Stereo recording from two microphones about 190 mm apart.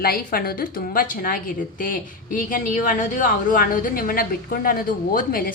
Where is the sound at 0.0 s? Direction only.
50° left (ahead or behind).